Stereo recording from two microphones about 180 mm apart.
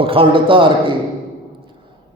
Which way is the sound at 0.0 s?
30° right (ahead or behind).